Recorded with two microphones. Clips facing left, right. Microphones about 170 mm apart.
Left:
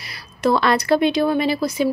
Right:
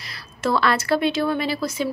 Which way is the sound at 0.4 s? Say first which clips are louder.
Left 3 dB; 15° left (ahead or behind).